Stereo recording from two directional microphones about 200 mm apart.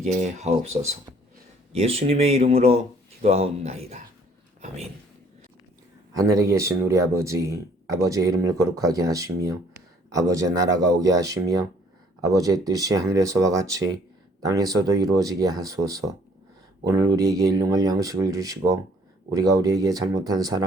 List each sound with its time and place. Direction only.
0.0 s speech: 35° right (ahead or behind)
6.1 s speech: 15° right (ahead or behind)